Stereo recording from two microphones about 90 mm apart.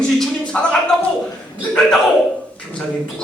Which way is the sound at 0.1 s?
5° left (ahead or behind).